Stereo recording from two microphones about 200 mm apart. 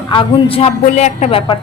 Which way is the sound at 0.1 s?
25° left (ahead or behind).